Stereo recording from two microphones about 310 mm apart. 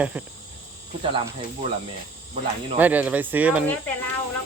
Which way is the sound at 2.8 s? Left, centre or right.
Centre.